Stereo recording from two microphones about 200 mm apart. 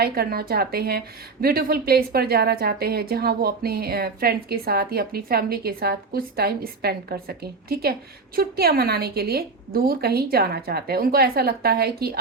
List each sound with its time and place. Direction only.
0.0 s a woman's voice: 50° right (ahead or behind)